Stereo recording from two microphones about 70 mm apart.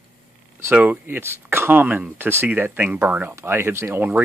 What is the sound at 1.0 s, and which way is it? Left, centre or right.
Speech, right.